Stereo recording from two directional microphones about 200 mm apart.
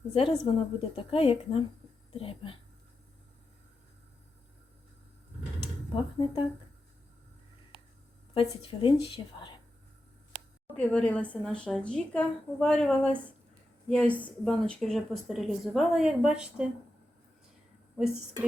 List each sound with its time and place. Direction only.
0.1 s a woman's voice: 25° left (ahead or behind)
5.9 s a woman's voice: 25° left (ahead or behind)
8.3 s a woman's voice: 25° left (ahead or behind)
10.8 s speech: 5° left (ahead or behind)
17.9 s speech: 5° right (ahead or behind)